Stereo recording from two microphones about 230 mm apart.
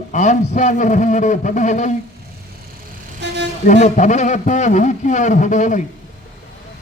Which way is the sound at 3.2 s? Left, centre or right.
Right.